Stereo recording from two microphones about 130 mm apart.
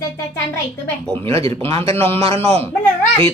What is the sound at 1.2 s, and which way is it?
A man's voice, 45° right (ahead or behind).